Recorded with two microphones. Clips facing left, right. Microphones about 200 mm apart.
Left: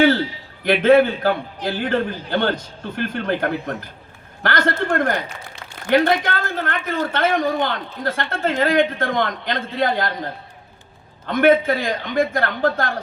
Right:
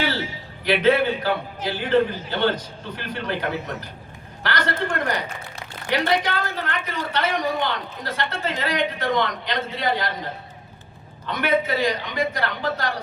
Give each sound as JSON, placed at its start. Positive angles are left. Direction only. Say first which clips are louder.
{"t": 0.6, "sound": "a man's voice", "louder": "left 5 dB", "side_deg": 50}
{"t": 11.3, "sound": "a man's voice", "louder": "left 7 dB", "side_deg": 50}